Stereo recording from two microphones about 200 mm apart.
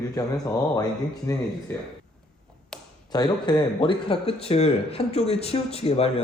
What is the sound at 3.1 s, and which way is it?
A man's voice, 20° left (ahead or behind).